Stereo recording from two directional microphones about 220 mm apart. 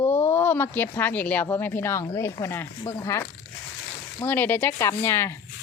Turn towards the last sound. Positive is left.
turn(degrees=10)  # may be behind; listen again after turning